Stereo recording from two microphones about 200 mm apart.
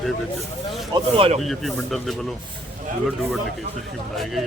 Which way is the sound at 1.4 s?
Centre (ahead or behind).